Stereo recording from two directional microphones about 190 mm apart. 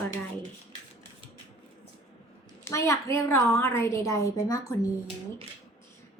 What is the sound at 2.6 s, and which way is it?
A woman's voice, 15° left (ahead or behind).